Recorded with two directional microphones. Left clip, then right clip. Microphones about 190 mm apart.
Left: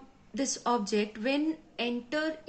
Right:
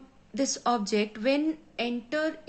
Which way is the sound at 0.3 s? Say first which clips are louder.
Right 3 dB; 25° right (ahead or behind).